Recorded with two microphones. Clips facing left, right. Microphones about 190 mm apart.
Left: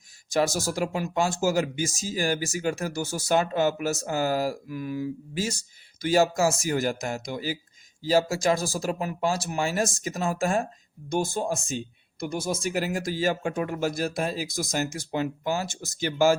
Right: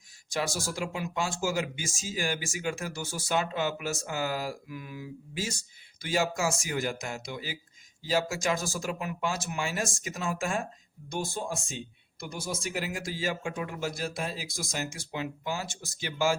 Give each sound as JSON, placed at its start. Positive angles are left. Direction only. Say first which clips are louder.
{"t": 0.3, "sound": "speech", "louder": "left 7 dB", "side_deg": 40}
{"t": 12.2, "sound": "speech", "louder": "left 7 dB", "side_deg": 45}